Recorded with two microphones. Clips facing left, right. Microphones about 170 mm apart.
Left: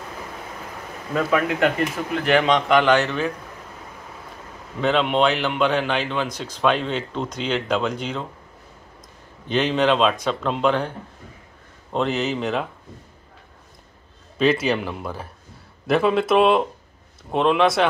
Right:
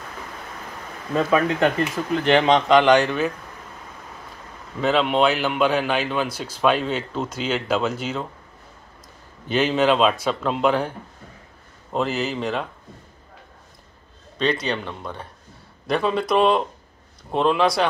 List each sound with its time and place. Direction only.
1.1 s speech: 30° right (ahead or behind); by 3.3 s 10° right (ahead or behind)
4.8 s speech: 5° right (ahead or behind)
9.5 s speech: 5° right (ahead or behind)
11.9 s speech: centre (ahead or behind)
14.4 s speech: 5° left (ahead or behind)